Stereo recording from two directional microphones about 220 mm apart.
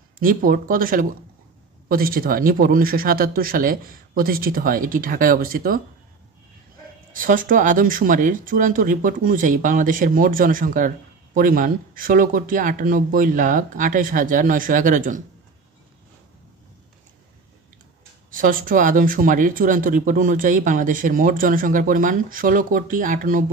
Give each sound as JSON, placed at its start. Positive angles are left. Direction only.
{"t": 0.2, "sound": "speech", "side_deg": -40}
{"t": 7.1, "sound": "speech", "side_deg": -40}
{"t": 18.3, "sound": "speech", "side_deg": -40}